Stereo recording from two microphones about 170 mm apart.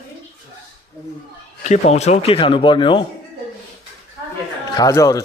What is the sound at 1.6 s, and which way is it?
Speech, 40° left (ahead or behind).